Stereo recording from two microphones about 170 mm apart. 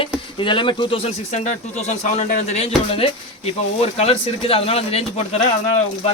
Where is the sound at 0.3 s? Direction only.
30° left (ahead or behind); by 2.4 s 45° left (ahead or behind).